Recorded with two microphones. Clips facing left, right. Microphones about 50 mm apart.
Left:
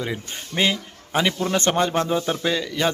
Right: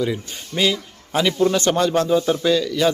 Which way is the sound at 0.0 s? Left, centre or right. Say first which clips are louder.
Right 5 dB; left.